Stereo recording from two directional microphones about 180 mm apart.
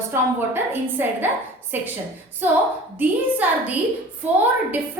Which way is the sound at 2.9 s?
10° right (ahead or behind).